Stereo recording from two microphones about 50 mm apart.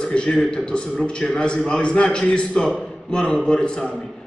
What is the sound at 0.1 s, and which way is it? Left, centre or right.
A man's voice, centre.